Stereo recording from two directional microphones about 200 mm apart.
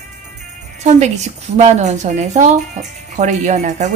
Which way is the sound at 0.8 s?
35° right (ahead or behind).